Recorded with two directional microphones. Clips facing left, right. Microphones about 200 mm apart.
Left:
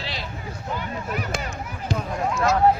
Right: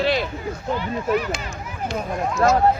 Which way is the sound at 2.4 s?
40° right (ahead or behind).